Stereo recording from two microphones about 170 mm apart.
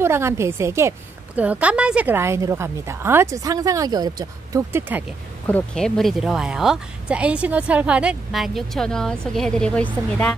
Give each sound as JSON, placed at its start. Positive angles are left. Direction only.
{"t": 0.0, "sound": "a woman's voice", "side_deg": -15}
{"t": 5.5, "sound": "a woman's voice", "side_deg": 5}